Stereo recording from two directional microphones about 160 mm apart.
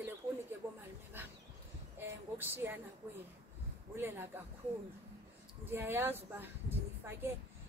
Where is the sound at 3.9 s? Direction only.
15° right (ahead or behind).